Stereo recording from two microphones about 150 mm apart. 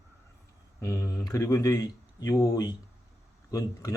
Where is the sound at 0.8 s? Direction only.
20° left (ahead or behind).